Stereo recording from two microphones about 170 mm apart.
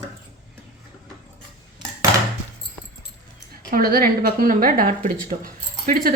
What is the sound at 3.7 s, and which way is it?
A woman's voice, 60° right (ahead or behind).